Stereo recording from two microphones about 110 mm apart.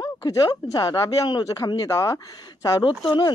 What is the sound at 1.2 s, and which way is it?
Speech, 45° left (ahead or behind).